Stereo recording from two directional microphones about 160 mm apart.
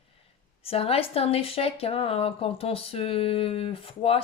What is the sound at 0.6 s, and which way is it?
Speech, 35° left (ahead or behind).